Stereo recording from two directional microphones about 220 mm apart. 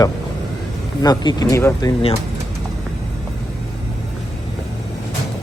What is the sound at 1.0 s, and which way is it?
Speech, 15° left (ahead or behind).